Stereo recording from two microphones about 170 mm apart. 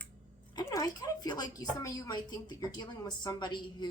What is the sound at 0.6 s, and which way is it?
Speech, 20° left (ahead or behind).